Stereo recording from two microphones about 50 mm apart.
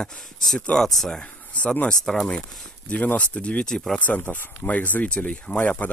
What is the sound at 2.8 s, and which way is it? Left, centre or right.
Speech, left.